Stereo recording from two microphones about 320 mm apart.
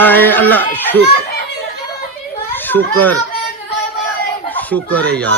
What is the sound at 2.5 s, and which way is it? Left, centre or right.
Speech, centre.